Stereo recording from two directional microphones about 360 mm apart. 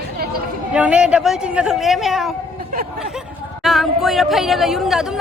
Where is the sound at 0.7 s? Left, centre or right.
Centre.